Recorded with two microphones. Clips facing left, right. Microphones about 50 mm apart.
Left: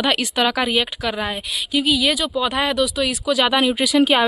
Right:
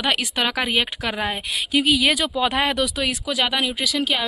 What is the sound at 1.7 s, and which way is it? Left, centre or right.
Speech, right.